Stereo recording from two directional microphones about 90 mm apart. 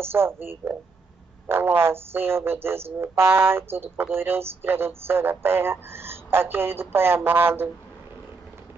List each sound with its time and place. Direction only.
0.0 s speech: 25° right (ahead or behind)